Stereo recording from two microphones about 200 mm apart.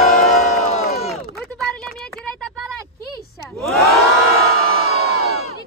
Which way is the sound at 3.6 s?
Centre (ahead or behind).